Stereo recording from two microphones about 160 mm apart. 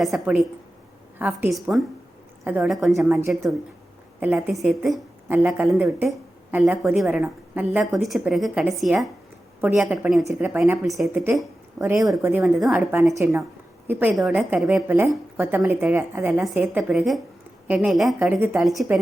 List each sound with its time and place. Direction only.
0.0 s a woman's voice: 5° right (ahead or behind)
3.1 s a woman's voice: 15° right (ahead or behind); by 9.0 s centre (ahead or behind)
9.6 s a woman's voice: 10° right (ahead or behind)
11.1 s speech: 15° right (ahead or behind)
11.9 s a woman's voice: centre (ahead or behind)
12.2 s speech: 10° right (ahead or behind)
12.5 s a woman's voice: centre (ahead or behind)
13.2 s a woman's voice: 10° right (ahead or behind)
14.8 s a woman's voice: 15° right (ahead or behind)
18.6 s a woman's voice: centre (ahead or behind)